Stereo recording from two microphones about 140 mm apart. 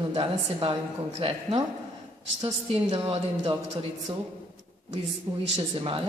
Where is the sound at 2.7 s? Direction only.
45° right (ahead or behind).